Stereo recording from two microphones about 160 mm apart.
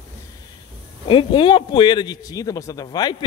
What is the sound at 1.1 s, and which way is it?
A man's voice, 30° left (ahead or behind).